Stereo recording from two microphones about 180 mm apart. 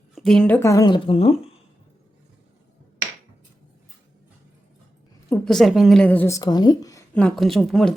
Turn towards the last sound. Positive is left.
turn(degrees=0)  # may be behind; listen again after turning